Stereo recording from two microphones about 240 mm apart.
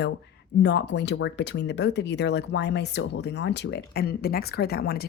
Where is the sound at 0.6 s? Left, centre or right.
Left.